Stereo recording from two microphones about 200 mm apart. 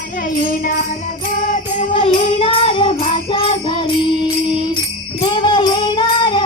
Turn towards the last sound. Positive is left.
turn(degrees=25)  # may be behind; listen again after turning